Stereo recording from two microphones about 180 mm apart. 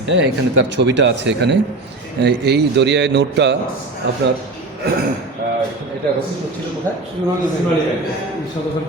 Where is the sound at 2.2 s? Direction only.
65° right (ahead or behind).